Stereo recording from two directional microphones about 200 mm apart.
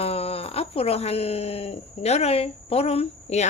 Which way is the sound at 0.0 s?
30° left (ahead or behind).